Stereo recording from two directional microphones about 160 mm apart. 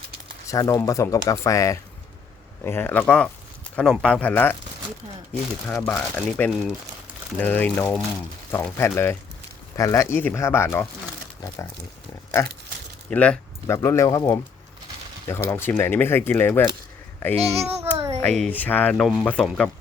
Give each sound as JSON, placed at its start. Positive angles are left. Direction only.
{"t": 0.4, "sound": "speech", "side_deg": 20}
{"t": 5.6, "sound": "speech", "side_deg": 15}
{"t": 12.4, "sound": "speech", "side_deg": 15}
{"t": 13.7, "sound": "speech", "side_deg": 20}
{"t": 15.4, "sound": "speech", "side_deg": 15}
{"t": 17.3, "sound": "a child's voice", "side_deg": -40}
{"t": 18.2, "sound": "speech", "side_deg": 5}